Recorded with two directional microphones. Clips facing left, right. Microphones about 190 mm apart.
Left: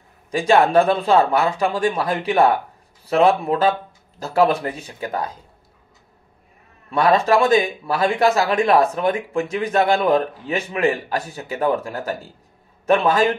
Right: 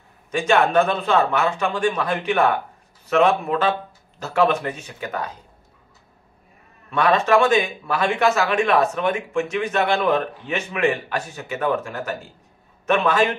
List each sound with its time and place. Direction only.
0.3 s a man's voice: 35° left (ahead or behind)
6.9 s a man's voice: 35° left (ahead or behind)